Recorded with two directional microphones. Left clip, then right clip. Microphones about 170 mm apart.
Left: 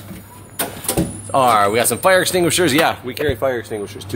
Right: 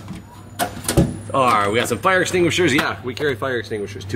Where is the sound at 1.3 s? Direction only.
30° left (ahead or behind).